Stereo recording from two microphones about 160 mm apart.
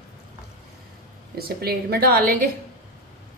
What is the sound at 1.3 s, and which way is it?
Speech, 75° right (ahead or behind).